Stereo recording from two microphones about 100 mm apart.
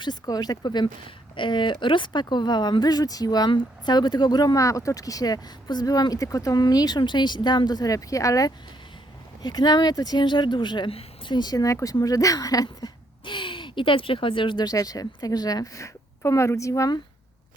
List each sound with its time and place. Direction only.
0.0 s speech: 45° left (ahead or behind)
13.2 s speech: 55° left (ahead or behind)
14.7 s speech: 40° left (ahead or behind)